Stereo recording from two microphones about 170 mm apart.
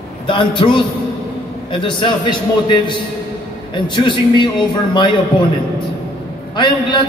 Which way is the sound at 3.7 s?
25° left (ahead or behind).